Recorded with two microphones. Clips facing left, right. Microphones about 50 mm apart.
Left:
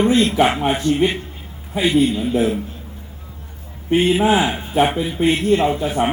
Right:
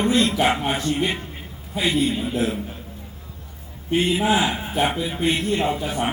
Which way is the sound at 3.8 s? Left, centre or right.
Left.